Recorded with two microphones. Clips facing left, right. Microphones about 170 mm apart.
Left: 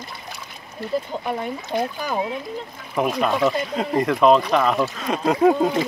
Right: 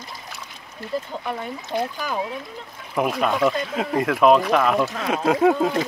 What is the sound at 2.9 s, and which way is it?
Speech, centre (ahead or behind).